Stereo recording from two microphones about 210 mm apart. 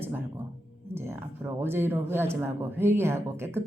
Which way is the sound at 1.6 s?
10° right (ahead or behind).